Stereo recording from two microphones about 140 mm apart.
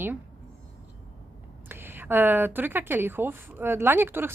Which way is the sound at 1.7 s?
15° right (ahead or behind).